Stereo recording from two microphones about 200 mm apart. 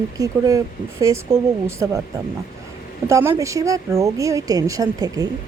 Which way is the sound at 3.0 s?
15° right (ahead or behind).